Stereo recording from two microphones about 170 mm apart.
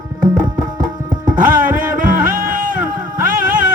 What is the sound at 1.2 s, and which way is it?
Music, 50° right (ahead or behind).